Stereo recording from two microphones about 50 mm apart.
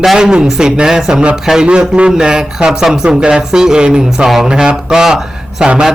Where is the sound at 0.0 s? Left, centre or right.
Centre.